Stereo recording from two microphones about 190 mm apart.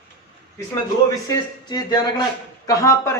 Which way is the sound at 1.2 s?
20° left (ahead or behind).